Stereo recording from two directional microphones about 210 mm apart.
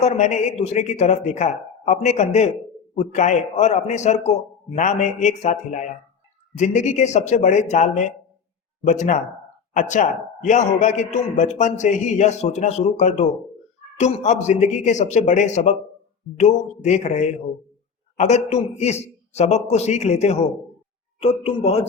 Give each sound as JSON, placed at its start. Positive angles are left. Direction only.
{"t": 0.0, "sound": "speech", "side_deg": 35}